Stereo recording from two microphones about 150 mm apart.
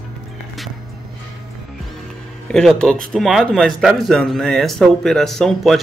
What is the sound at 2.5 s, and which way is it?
Speech, 5° left (ahead or behind).